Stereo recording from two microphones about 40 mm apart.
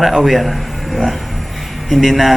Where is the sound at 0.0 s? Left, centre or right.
Centre.